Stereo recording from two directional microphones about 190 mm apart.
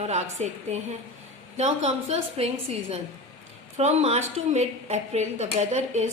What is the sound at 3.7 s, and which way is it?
A woman's voice, 35° right (ahead or behind).